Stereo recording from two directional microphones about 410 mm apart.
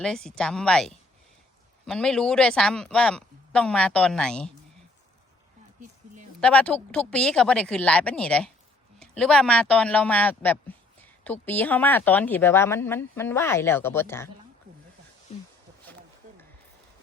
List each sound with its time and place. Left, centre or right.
0.0 s a woman's voice: centre
6.4 s a woman's voice: centre
15.3 s zipper: centre